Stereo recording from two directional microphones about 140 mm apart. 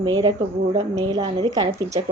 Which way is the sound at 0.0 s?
30° right (ahead or behind).